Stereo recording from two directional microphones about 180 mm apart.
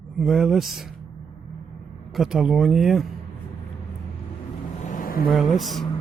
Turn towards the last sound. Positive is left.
turn(degrees=0)  # may be behind; listen again after turning